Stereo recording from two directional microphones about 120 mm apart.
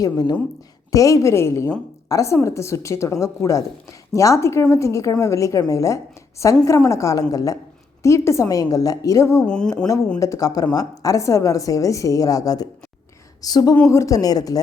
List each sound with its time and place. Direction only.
0.0 s a woman's voice: 35° left (ahead or behind)